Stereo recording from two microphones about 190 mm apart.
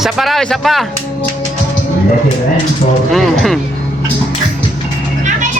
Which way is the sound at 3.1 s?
Centre (ahead or behind).